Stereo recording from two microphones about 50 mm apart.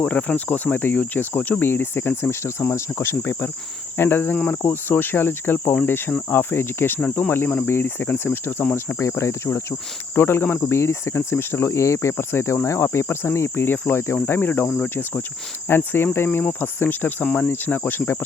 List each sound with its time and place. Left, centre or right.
0.0 s speech: left
1.6 s speech: left
6.3 s speech: left
8.7 s speech: left
10.2 s speech: left
12.1 s speech: left
12.6 s speech: left
13.3 s speech: left
13.7 s speech: left
15.7 s speech: left